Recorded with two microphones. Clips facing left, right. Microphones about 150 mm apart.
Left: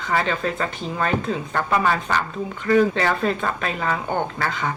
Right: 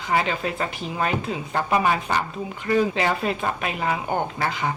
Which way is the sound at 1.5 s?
20° right (ahead or behind).